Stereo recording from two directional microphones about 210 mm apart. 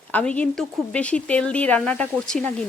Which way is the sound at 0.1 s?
5° left (ahead or behind).